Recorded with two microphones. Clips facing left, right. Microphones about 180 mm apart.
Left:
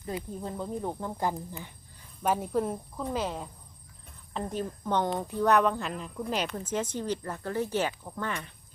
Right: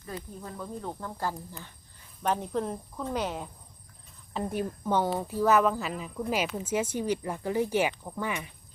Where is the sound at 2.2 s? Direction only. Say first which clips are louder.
Left 1 dB; 5° left (ahead or behind).